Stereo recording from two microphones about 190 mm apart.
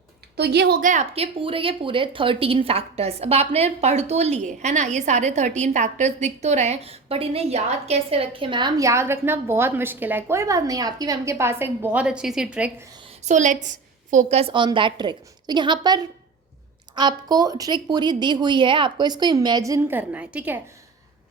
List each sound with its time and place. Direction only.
0.3 s a woman's voice: 60° right (ahead or behind)
0.8 s a woman's voice: 40° right (ahead or behind); by 12.7 s 5° right (ahead or behind)
13.2 s a woman's voice: 40° right (ahead or behind); by 20.6 s 10° right (ahead or behind)